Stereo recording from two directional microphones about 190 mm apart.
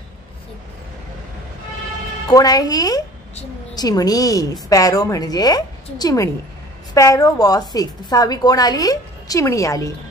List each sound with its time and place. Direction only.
2.2 s a woman's voice: 20° left (ahead or behind)